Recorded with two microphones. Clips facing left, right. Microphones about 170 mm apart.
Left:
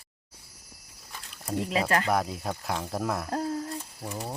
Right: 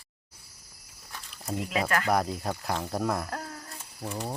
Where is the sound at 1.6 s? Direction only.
30° left (ahead or behind).